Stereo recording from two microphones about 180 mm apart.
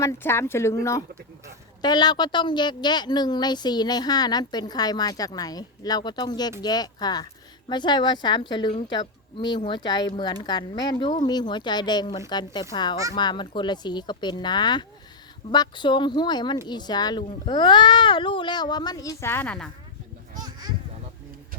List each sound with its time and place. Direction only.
0.0 s speech: 15° left (ahead or behind)